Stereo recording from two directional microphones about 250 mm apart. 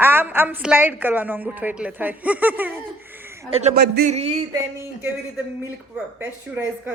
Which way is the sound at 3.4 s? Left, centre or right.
Right.